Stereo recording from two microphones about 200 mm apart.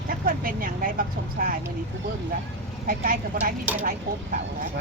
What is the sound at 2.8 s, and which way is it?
A woman's voice, 45° right (ahead or behind).